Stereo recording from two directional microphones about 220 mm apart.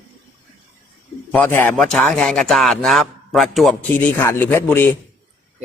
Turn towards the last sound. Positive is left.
turn(degrees=10)  # may be behind; listen again after turning